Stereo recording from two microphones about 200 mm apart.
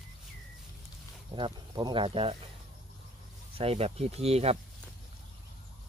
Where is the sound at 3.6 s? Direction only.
30° right (ahead or behind).